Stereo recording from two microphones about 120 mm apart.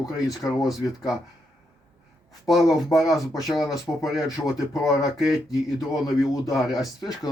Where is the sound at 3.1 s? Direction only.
30° left (ahead or behind).